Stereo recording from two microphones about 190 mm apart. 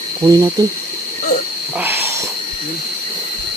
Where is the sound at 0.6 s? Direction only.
20° right (ahead or behind).